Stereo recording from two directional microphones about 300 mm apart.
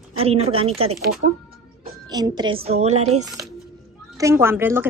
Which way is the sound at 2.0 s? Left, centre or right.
Centre.